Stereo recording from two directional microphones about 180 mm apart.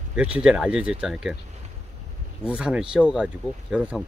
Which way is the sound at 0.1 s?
5° right (ahead or behind).